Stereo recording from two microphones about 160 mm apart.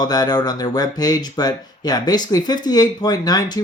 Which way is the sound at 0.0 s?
25° left (ahead or behind).